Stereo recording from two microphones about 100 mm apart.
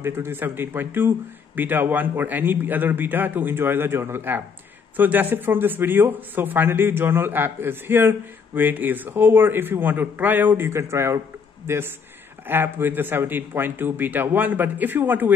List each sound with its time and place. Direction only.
0.0 s a man's voice: 25° right (ahead or behind)